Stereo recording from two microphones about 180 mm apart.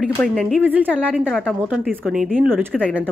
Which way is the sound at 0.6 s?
10° right (ahead or behind).